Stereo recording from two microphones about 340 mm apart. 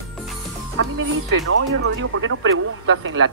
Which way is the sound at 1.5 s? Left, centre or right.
Right.